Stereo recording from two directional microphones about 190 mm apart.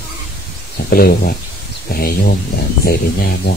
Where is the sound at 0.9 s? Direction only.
55° left (ahead or behind).